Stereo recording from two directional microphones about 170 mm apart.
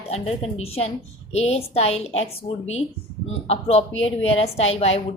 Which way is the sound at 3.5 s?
35° left (ahead or behind).